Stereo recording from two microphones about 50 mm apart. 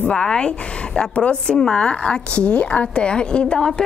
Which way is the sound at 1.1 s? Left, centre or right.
Left.